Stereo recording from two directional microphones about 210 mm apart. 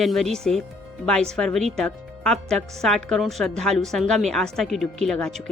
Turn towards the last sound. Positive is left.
turn(degrees=5)  # may be behind; listen again after turning